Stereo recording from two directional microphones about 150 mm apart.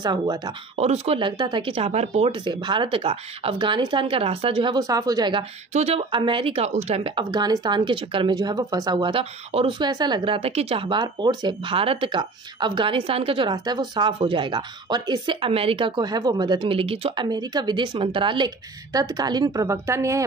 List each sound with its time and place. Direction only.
0.0 s speech: 30° right (ahead or behind)
0.7 s speech: 45° right (ahead or behind); by 5.4 s 25° right (ahead or behind)
5.7 s speech: 45° right (ahead or behind)
18.9 s speech: 25° right (ahead or behind)